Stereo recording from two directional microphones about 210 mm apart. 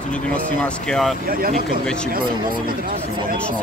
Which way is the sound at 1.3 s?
45° right (ahead or behind).